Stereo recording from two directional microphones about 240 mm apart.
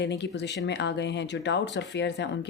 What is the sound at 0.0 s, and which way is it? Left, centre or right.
Speech, left.